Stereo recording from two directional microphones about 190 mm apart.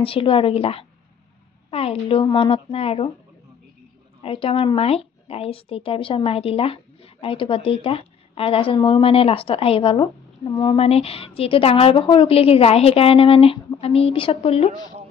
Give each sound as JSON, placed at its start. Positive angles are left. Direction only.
{"t": 0.0, "sound": "a woman's voice", "side_deg": 30}
{"t": 4.2, "sound": "a woman's voice", "side_deg": 30}